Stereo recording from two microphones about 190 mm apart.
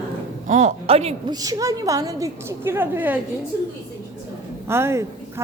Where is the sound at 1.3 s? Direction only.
20° right (ahead or behind).